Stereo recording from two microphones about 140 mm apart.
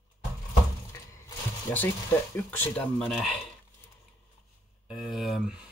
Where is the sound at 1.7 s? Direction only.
15° left (ahead or behind).